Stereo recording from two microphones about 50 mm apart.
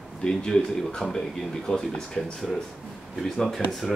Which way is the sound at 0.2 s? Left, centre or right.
Centre.